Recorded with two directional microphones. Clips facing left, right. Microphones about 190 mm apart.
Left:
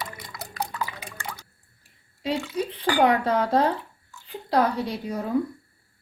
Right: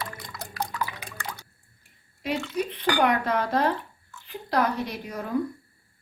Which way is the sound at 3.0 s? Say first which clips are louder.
Left 3 dB; 30° left (ahead or behind).